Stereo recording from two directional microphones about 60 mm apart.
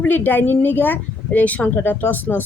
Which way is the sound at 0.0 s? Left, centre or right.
Left.